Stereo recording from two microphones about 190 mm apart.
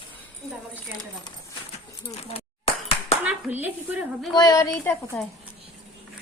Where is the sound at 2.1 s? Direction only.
30° left (ahead or behind).